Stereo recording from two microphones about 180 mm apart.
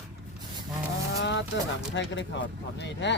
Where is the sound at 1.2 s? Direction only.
80° left.